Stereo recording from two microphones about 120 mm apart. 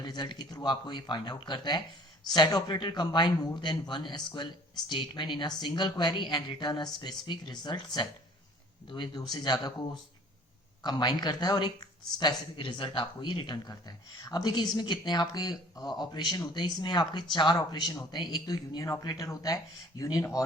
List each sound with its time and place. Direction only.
0.0 s speech: 35° left (ahead or behind)
8.9 s speech: 40° left (ahead or behind)